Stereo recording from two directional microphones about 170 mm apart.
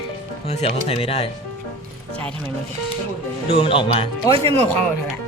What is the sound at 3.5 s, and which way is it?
Speech, 30° left (ahead or behind).